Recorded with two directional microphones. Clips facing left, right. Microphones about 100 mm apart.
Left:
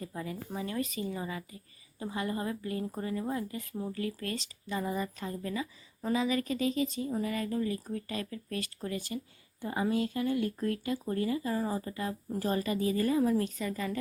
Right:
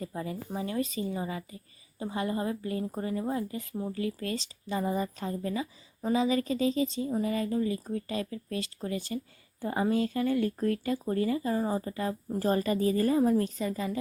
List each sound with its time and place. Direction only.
0.2 s speech: 30° right (ahead or behind)